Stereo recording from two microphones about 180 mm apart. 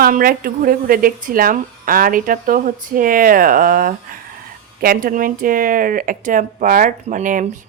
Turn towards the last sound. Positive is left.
turn(degrees=-45)  # may be behind; listen again after turning